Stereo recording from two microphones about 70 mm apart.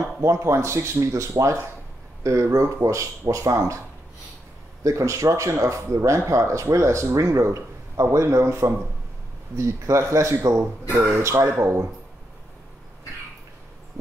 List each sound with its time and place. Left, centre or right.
0.2 s speech: right
4.8 s speech: right